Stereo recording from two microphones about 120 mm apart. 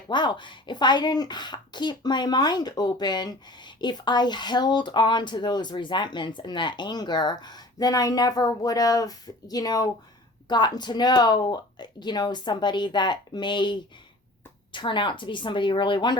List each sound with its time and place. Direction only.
0.1 s a woman's voice: 40° left (ahead or behind)